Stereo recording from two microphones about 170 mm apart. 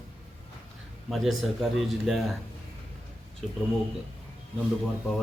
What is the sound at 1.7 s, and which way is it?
Speech, centre (ahead or behind).